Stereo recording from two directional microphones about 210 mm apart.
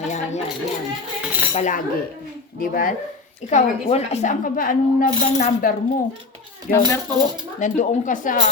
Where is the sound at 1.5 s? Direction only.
35° left (ahead or behind).